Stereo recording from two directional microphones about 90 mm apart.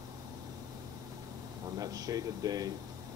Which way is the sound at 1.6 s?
45° right (ahead or behind).